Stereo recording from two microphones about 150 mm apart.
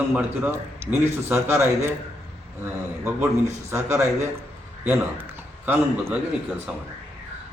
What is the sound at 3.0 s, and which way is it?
A man's voice, 15° right (ahead or behind).